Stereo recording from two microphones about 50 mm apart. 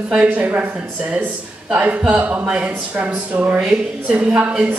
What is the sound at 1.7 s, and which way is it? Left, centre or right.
Speech, right.